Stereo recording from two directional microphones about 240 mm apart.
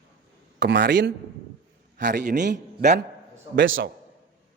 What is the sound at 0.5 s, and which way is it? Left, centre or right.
A man's voice, right.